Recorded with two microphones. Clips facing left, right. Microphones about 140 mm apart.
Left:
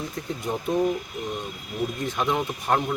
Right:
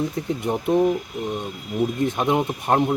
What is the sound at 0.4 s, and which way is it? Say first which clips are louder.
Speech: right 5 dB; 20° right (ahead or behind).